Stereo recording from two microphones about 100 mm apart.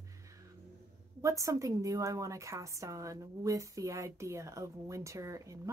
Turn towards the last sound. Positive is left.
turn(degrees=-35)  # may be behind; listen again after turning